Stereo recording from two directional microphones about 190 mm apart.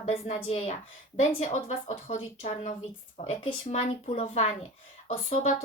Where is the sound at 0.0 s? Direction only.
30° left (ahead or behind).